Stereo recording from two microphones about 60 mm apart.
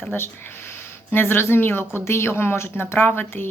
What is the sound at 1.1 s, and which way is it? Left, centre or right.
Speech, left.